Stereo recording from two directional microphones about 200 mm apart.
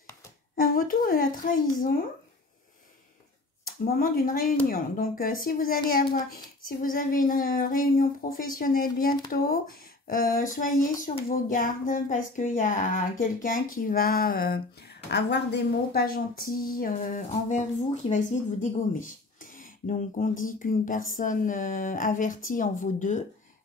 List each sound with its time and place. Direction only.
0.6 s speech: 45° left (ahead or behind)
3.8 s speech: 45° left (ahead or behind)